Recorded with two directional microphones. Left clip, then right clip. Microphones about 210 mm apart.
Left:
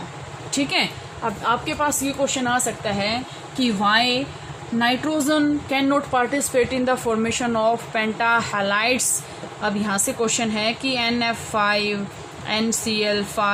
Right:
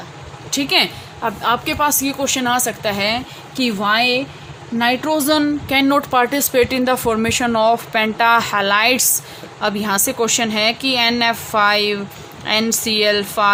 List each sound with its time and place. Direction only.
0.5 s a woman's voice: 55° right (ahead or behind)